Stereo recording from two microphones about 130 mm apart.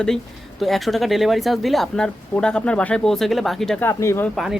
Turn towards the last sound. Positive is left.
turn(degrees=20)  # may be behind; listen again after turning